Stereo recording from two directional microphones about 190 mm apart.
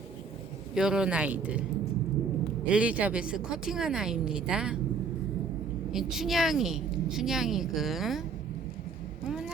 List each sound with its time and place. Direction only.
0.7 s a woman's voice: 5° right (ahead or behind)
2.6 s a woman's voice: 5° right (ahead or behind)
5.9 s a woman's voice: centre (ahead or behind)